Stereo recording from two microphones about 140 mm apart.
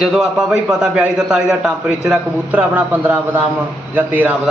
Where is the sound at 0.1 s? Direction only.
Centre (ahead or behind).